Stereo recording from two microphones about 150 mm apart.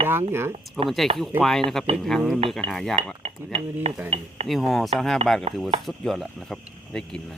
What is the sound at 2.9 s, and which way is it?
Cutlery, 40° right (ahead or behind).